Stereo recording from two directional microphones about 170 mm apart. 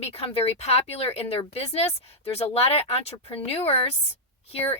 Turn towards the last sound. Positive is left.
turn(degrees=35)  # may be behind; listen again after turning